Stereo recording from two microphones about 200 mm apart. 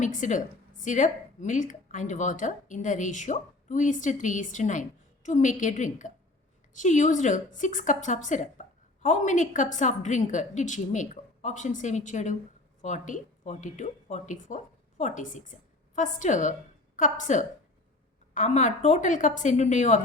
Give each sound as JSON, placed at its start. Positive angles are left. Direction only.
{"t": 0.0, "sound": "a woman's voice", "side_deg": 40}